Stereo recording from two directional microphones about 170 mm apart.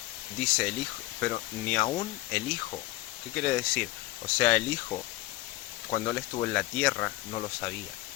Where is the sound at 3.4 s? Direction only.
10° left (ahead or behind).